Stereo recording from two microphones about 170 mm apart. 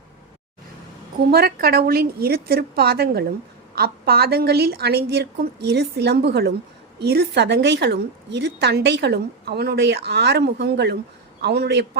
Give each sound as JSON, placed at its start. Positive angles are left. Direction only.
{"t": 1.3, "sound": "a woman's voice", "side_deg": -65}